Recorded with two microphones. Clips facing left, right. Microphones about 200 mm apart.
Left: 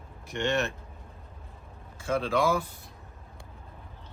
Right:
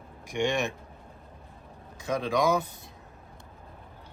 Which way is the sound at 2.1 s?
15° right (ahead or behind).